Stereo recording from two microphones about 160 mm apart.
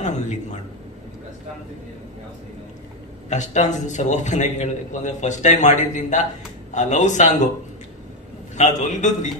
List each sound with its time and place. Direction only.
0.0 s a man's voice: 50° left (ahead or behind)
3.3 s a man's voice: 50° left (ahead or behind)
8.5 s a man's voice: 50° left (ahead or behind)